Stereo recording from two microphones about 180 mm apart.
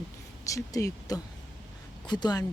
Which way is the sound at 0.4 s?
20° left (ahead or behind).